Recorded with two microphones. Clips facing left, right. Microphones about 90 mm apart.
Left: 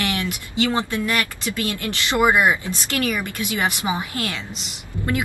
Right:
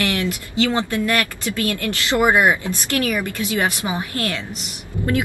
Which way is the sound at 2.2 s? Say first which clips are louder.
Right 1 dB; 25° right (ahead or behind).